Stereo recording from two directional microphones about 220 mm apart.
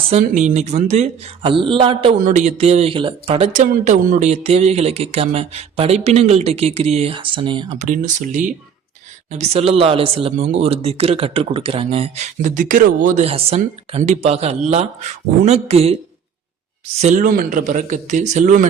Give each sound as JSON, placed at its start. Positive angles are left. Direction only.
{"t": 0.1, "sound": "speech", "side_deg": -35}
{"t": 7.9, "sound": "speech", "side_deg": -35}
{"t": 17.0, "sound": "speech", "side_deg": -35}